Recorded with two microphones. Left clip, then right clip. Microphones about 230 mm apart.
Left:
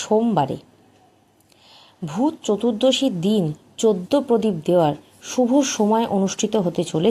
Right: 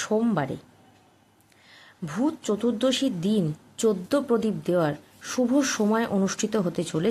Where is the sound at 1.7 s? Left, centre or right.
Centre.